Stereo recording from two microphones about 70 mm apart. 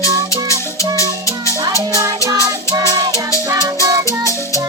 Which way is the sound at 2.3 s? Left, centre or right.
Right.